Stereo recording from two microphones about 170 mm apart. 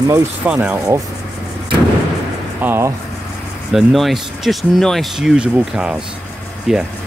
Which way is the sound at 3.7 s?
Centre (ahead or behind).